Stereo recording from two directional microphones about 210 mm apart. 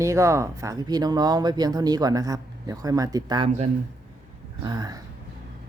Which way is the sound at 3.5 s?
30° right (ahead or behind).